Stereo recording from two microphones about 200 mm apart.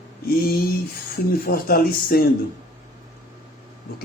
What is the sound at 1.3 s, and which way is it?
Speech, 50° left (ahead or behind).